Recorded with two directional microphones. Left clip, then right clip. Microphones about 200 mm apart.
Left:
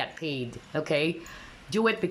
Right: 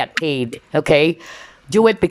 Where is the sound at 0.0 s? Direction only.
35° right (ahead or behind).